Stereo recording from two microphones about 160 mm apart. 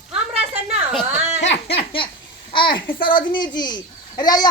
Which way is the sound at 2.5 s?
30° left (ahead or behind).